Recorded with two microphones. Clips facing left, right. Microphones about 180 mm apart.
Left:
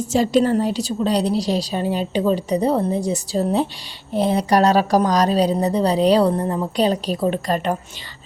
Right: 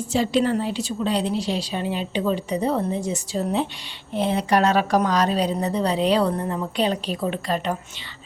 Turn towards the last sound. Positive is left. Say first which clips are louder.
# left 4 dB
turn(degrees=45)  # may be behind; listen again after turning